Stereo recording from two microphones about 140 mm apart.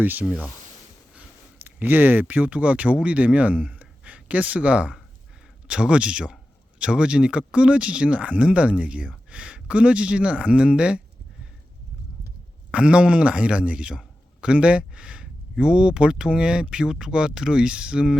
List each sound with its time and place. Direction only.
0.0 s a man's voice: 10° right (ahead or behind)
12.7 s a man's voice: 5° right (ahead or behind)